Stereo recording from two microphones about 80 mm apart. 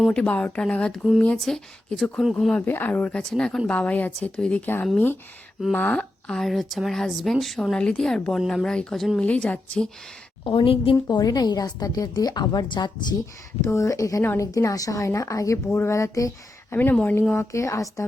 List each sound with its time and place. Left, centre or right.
0.1 s a woman's voice: centre
2.6 s a woman's voice: left; by 9.2 s centre
9.2 s speech: centre
10.4 s a woman's voice: left
11.1 s a woman's voice: left
13.7 s a woman's voice: left
16.9 s speech: centre
17.3 s speech: left